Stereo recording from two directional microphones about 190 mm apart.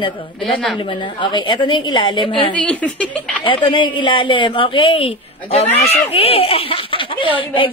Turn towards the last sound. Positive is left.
turn(degrees=25)  # may be behind; listen again after turning